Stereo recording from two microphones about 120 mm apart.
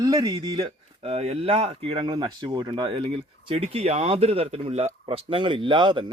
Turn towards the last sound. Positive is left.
turn(degrees=-45)  # may be behind; listen again after turning